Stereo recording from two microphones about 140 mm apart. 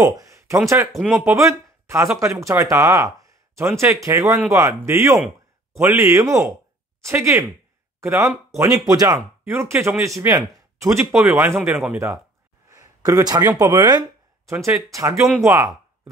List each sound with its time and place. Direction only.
0.0 s a sound: 25° right (ahead or behind)
0.9 s speech: 5° right (ahead or behind)
1.4 s speech: 20° right (ahead or behind)
12.6 s speech: 25° right (ahead or behind)